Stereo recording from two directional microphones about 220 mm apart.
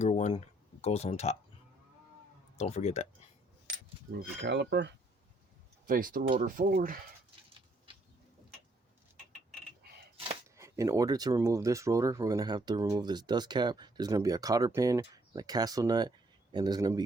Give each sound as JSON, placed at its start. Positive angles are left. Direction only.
{"t": 0.0, "sound": "speech", "side_deg": 30}
{"t": 2.6, "sound": "speech", "side_deg": 30}
{"t": 4.1, "sound": "speech", "side_deg": -50}
{"t": 5.9, "sound": "speech", "side_deg": -40}
{"t": 10.6, "sound": "speech", "side_deg": -15}